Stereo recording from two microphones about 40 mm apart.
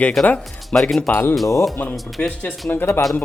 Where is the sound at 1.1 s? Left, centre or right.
Left.